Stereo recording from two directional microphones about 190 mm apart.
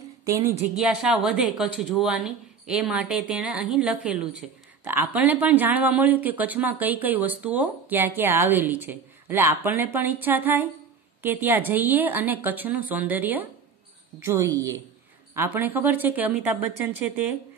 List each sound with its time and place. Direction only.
0.2 s a woman's voice: 15° right (ahead or behind)
15.3 s a woman's voice: 10° right (ahead or behind)